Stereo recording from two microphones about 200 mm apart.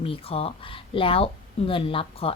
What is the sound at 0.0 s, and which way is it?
A woman's voice, 30° left (ahead or behind).